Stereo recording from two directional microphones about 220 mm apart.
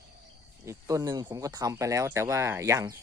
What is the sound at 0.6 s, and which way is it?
Speech, 15° right (ahead or behind).